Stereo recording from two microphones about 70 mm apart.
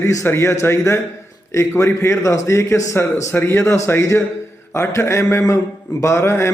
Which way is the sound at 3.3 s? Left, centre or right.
Left.